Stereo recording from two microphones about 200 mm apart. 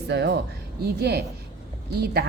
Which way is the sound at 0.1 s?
55° right (ahead or behind).